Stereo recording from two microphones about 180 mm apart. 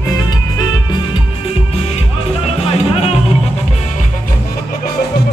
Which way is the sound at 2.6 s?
35° left (ahead or behind).